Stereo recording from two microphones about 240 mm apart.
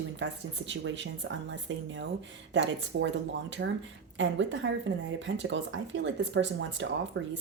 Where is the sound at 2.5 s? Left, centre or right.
Right.